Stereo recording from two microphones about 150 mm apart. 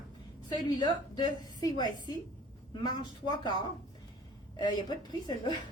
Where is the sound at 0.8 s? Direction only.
30° left (ahead or behind).